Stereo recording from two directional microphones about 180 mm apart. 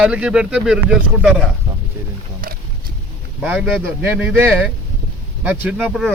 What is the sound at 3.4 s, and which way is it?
Speech, 10° right (ahead or behind).